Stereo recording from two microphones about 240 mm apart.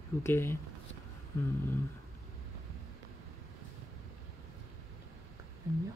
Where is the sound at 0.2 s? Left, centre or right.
Centre.